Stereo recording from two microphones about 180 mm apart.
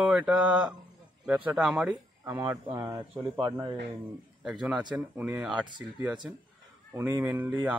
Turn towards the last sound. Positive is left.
turn(degrees=-10)  # may be behind; listen again after turning